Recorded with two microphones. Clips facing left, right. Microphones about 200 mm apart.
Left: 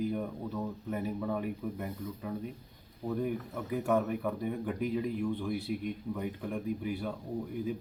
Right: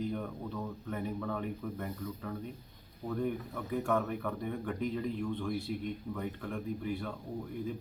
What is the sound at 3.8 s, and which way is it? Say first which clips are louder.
Speech: left 3 dB; 15° left (ahead or behind).